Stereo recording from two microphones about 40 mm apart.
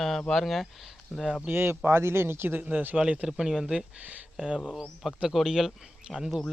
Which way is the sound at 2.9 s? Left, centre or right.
Right.